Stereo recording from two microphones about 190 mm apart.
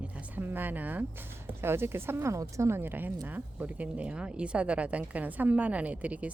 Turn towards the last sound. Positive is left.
turn(degrees=-5)  # may be behind; listen again after turning